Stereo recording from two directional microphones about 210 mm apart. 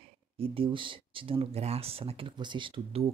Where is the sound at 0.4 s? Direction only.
25° right (ahead or behind).